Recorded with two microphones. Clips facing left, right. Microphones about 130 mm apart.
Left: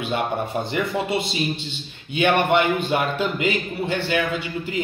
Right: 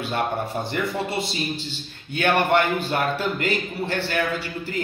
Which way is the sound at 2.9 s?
10° left (ahead or behind).